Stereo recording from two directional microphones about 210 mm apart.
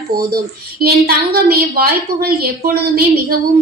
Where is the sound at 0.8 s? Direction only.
45° right (ahead or behind).